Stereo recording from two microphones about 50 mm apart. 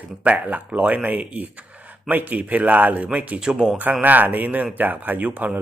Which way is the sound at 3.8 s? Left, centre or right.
Right.